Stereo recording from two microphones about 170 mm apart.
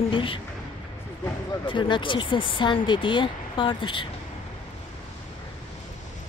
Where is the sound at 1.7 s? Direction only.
30° left (ahead or behind).